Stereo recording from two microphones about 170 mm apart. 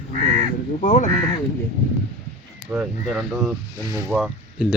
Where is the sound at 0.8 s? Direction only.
50° left (ahead or behind).